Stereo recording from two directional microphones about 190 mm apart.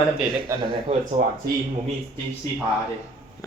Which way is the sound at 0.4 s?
25° right (ahead or behind).